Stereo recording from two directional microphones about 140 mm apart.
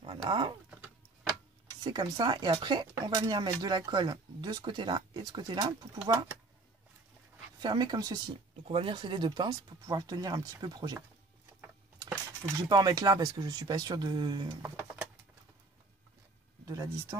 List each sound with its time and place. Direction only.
0.0 s speech: 40° right (ahead or behind)
0.7 s a sound: 10° right (ahead or behind)
1.8 s speech: 30° right (ahead or behind)
7.6 s speech: 30° right (ahead or behind)
8.6 s speech: 40° right (ahead or behind)
12.5 s speech: 30° right (ahead or behind)
14.6 s a sound: 15° right (ahead or behind)
16.6 s speech: 25° right (ahead or behind)